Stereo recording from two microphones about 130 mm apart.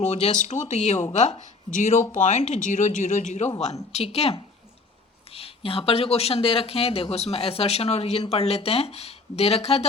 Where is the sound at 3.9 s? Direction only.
55° left (ahead or behind).